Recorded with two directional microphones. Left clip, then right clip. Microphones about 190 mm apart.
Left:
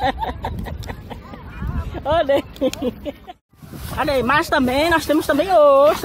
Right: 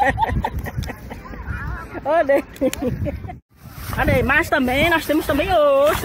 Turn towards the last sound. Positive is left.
turn(degrees=10)  # may be behind; listen again after turning